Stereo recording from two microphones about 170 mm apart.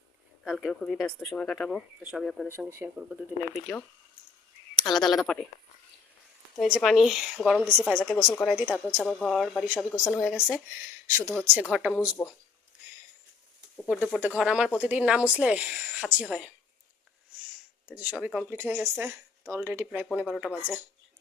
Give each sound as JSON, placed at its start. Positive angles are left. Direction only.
{"t": 0.4, "sound": "a woman's voice", "side_deg": 0}
{"t": 2.5, "sound": "speech", "side_deg": -15}
{"t": 6.6, "sound": "a woman's voice", "side_deg": 0}
{"t": 10.5, "sound": "speech", "side_deg": -15}
{"t": 11.6, "sound": "a woman's voice", "side_deg": -5}
{"t": 13.8, "sound": "a woman's voice", "side_deg": -5}
{"t": 17.8, "sound": "a woman's voice", "side_deg": -10}